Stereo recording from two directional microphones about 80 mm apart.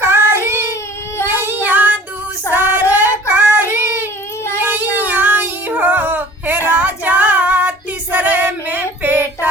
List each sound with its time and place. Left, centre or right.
0.0 s child singing: right
1.2 s child singing: left
1.5 s child singing: right
4.6 s a sound: right